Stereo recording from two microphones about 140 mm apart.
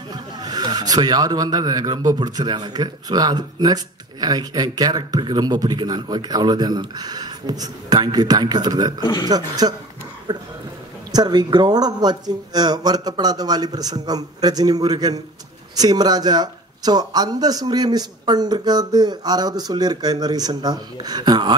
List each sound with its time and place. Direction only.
0.1 s speech: 30° right (ahead or behind)
9.0 s speech: 30° left (ahead or behind)
9.3 s speech: 30° right (ahead or behind)